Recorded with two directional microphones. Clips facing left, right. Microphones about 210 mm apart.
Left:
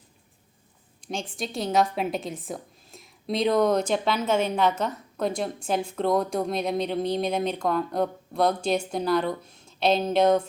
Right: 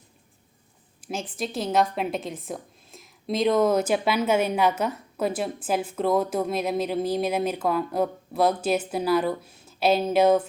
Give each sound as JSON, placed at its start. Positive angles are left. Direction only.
{"t": 1.0, "sound": "a woman's voice", "side_deg": -5}